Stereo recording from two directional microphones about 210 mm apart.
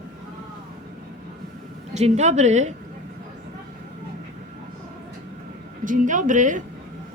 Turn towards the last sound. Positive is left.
turn(degrees=-35)  # may be behind; listen again after turning